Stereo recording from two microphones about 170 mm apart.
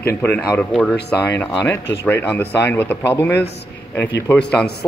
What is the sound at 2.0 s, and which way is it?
A man's voice, 10° left (ahead or behind).